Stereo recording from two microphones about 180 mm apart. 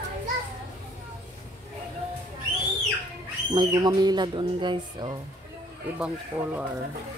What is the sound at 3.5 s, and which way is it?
Speech, 25° right (ahead or behind).